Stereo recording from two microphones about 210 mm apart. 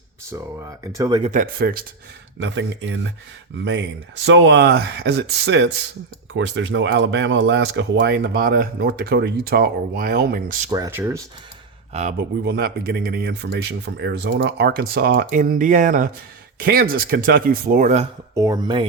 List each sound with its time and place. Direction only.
0.3 s speech: 15° right (ahead or behind)
1.2 s speech: 40° right (ahead or behind)
2.4 s speech: 60° right (ahead or behind)
6.3 s speech: 65° right (ahead or behind); by 10.7 s 45° right (ahead or behind)
10.7 s speech: 15° right (ahead or behind)
12.5 s speech: 45° right (ahead or behind)
18.3 s speech: 15° right (ahead or behind)